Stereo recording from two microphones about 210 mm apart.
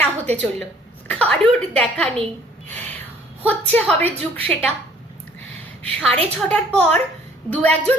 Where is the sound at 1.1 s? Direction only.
5° left (ahead or behind).